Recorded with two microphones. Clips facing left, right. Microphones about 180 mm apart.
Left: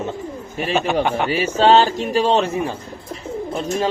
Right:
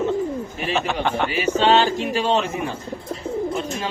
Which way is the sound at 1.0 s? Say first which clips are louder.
Left 3 dB; 10° left (ahead or behind).